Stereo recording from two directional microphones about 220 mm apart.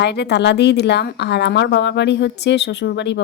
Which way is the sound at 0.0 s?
50° left (ahead or behind).